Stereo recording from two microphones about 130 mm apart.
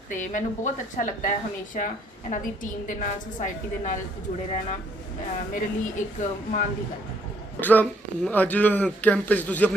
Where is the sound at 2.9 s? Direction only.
90° left.